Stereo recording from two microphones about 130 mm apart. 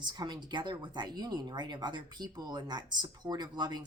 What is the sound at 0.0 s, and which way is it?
Speech, 35° right (ahead or behind).